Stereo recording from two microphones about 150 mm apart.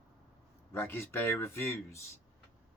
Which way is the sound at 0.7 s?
15° left (ahead or behind).